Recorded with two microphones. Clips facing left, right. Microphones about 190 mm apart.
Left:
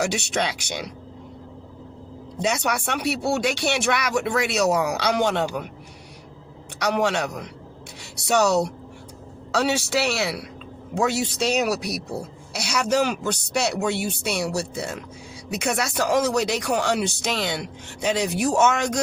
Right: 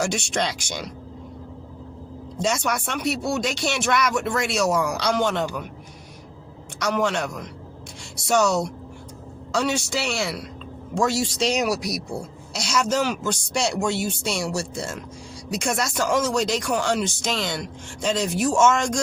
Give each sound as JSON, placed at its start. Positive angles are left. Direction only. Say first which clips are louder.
{"t": 0.0, "sound": "speech", "louder": "even", "side_deg": 65}
{"t": 2.4, "sound": "speech", "louder": "even", "side_deg": 60}
{"t": 6.7, "sound": "a woman's voice", "louder": "left 1 dB", "side_deg": 65}